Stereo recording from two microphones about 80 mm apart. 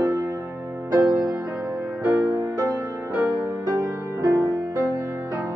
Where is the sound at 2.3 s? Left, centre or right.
Right.